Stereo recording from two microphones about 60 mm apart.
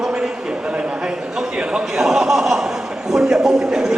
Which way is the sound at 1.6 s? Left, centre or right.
Centre.